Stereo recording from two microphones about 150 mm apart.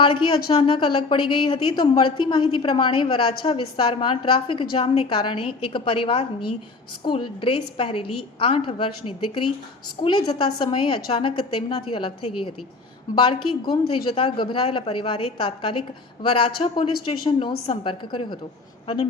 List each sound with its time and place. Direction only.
0.0 s a woman's voice: 35° left (ahead or behind)